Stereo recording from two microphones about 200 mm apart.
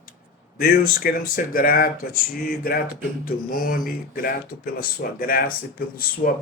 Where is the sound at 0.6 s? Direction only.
50° left (ahead or behind).